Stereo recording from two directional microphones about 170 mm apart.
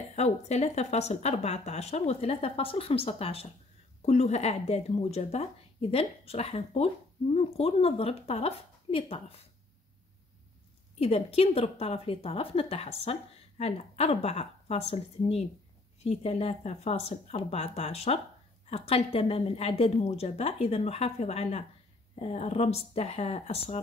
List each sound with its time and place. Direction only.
0.1 s a woman's voice: 40° left (ahead or behind)
11.0 s a woman's voice: 35° left (ahead or behind)